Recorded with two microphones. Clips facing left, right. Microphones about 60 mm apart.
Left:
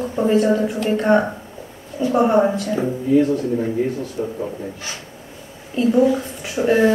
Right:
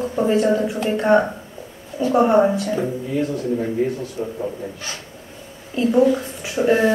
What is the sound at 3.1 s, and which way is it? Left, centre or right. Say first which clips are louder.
Speech: left 8 dB; left.